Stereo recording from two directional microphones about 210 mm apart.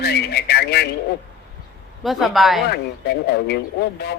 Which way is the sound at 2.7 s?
50° left (ahead or behind).